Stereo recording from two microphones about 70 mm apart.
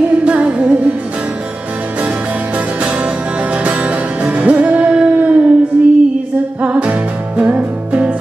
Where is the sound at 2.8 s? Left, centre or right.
Centre.